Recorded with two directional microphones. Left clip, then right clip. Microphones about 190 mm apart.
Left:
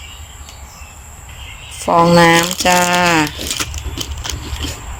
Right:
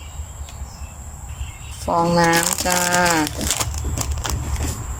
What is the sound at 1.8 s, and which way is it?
Speech, centre (ahead or behind).